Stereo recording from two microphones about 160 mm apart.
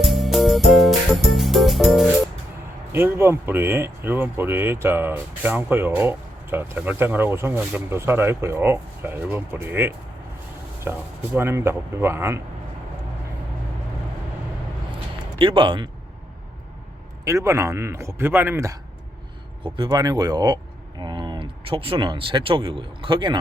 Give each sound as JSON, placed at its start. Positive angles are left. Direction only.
{"t": 0.0, "sound": "music", "side_deg": 0}
{"t": 2.9, "sound": "speech", "side_deg": -15}
{"t": 15.4, "sound": "speech", "side_deg": -30}
{"t": 17.2, "sound": "speech", "side_deg": -20}
{"t": 19.6, "sound": "speech", "side_deg": -30}